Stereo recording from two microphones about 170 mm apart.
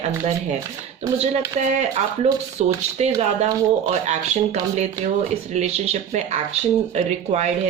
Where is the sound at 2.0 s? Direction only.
45° right (ahead or behind).